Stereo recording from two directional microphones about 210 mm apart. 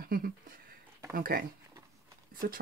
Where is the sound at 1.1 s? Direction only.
45° right (ahead or behind).